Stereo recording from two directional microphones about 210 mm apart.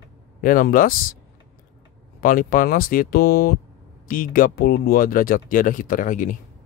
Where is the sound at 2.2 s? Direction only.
40° left (ahead or behind).